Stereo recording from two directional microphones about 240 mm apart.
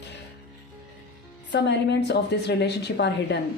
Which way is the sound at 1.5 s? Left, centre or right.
Left.